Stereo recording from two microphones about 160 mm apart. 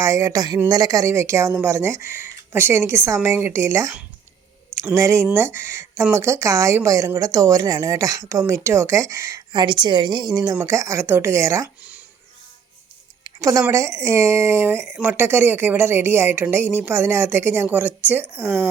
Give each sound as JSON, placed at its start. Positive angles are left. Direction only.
{"t": 0.0, "sound": "a woman's voice", "side_deg": -20}
{"t": 4.9, "sound": "a woman's voice", "side_deg": -20}
{"t": 13.2, "sound": "speech", "side_deg": -20}